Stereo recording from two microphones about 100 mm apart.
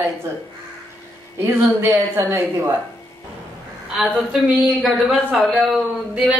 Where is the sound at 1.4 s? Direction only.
25° right (ahead or behind).